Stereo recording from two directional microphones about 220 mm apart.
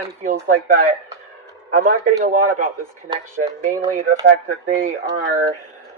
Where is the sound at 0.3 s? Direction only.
35° right (ahead or behind).